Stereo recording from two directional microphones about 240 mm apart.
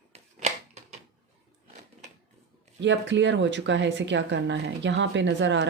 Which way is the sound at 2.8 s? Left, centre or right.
Right.